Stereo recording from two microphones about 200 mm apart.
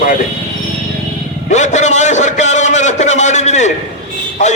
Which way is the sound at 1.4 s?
35° left (ahead or behind).